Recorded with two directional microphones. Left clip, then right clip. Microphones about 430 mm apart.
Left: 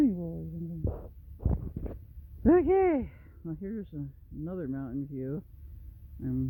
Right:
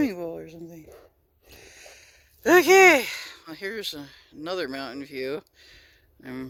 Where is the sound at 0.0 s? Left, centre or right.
Centre.